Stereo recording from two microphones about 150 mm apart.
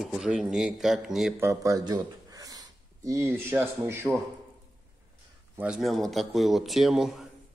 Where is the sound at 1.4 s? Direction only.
20° right (ahead or behind).